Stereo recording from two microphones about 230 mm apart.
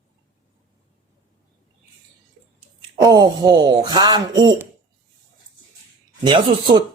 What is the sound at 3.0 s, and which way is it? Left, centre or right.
Speech, centre.